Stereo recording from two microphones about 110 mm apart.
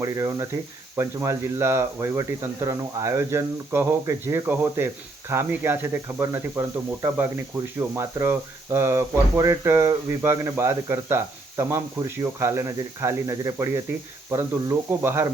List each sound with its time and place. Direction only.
0.0 s speech: 30° right (ahead or behind)